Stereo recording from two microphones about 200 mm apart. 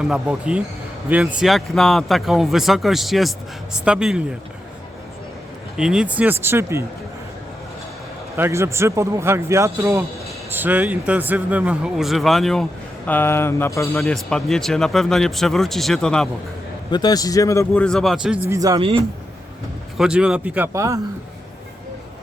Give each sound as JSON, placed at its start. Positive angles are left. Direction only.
{"t": 0.0, "sound": "speech", "side_deg": -5}
{"t": 5.7, "sound": "a man's voice", "side_deg": -5}
{"t": 8.4, "sound": "a man's voice", "side_deg": -15}
{"t": 16.9, "sound": "speech", "side_deg": 20}
{"t": 17.8, "sound": "a man's voice", "side_deg": 0}
{"t": 20.0, "sound": "speech", "side_deg": -5}